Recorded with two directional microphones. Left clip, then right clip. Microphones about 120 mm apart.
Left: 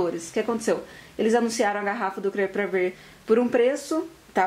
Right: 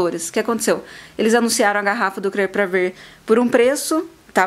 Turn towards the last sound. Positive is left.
turn(degrees=-50)  # may be behind; listen again after turning